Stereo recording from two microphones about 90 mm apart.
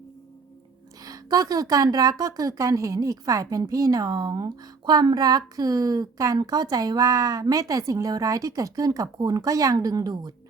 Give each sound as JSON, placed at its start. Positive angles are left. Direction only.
{"t": 1.0, "sound": "a woman's voice", "side_deg": -45}